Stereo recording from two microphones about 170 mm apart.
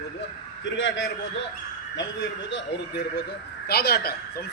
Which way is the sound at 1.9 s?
90° left.